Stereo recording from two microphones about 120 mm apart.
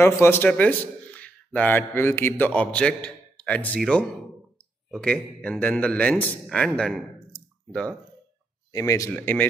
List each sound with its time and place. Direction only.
0.0 s a man's voice: 20° left (ahead or behind)
8.7 s speech: 25° left (ahead or behind)
9.1 s a man's voice: 15° left (ahead or behind)